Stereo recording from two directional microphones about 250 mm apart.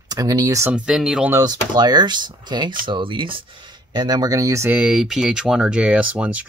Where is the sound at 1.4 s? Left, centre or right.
Centre.